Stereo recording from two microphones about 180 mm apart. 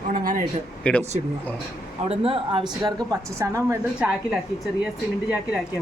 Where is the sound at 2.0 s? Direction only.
30° right (ahead or behind).